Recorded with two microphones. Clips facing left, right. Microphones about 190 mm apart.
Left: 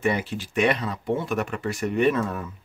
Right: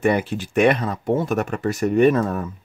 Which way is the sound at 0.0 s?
50° right (ahead or behind).